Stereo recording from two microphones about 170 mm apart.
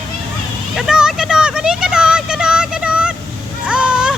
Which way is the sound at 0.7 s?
5° right (ahead or behind).